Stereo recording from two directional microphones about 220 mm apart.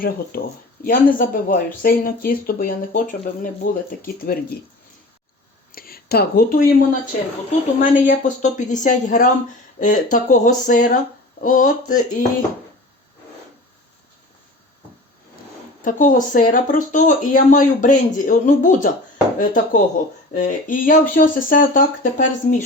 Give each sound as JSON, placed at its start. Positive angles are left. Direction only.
{"t": 0.0, "sound": "speech", "side_deg": 40}
{"t": 5.7, "sound": "speech", "side_deg": 40}
{"t": 15.8, "sound": "speech", "side_deg": 35}